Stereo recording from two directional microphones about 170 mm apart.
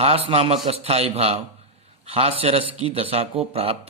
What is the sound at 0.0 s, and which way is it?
Speech, 35° right (ahead or behind).